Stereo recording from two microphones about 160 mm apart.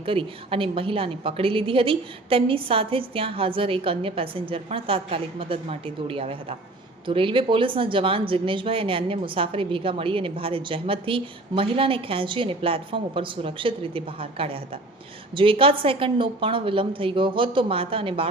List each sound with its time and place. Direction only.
0.0 s speech: 35° right (ahead or behind)